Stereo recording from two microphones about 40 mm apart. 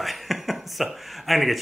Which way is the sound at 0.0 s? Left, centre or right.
Centre.